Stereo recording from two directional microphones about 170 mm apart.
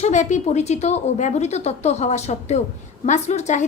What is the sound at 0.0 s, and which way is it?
A woman's voice, 45° left (ahead or behind).